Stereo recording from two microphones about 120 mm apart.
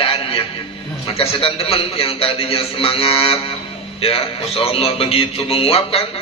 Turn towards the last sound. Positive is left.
turn(degrees=50)  # may be behind; listen again after turning